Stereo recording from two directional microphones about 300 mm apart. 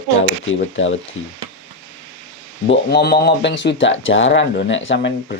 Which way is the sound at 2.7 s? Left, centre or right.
Left.